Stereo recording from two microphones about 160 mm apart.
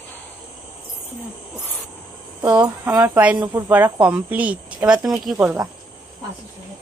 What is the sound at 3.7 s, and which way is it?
Speech, 10° right (ahead or behind).